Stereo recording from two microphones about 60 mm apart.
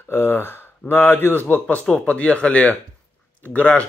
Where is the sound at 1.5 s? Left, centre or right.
Left.